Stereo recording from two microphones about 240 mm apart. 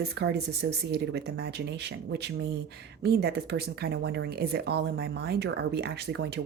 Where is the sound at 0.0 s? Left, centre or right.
Right.